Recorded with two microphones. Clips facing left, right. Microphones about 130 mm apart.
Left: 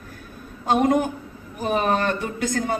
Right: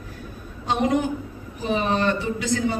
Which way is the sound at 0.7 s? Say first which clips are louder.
Left 2 dB; 50° left (ahead or behind).